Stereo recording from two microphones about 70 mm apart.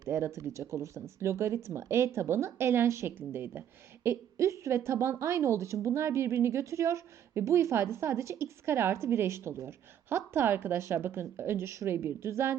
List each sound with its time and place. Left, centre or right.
0.1 s a woman's voice: right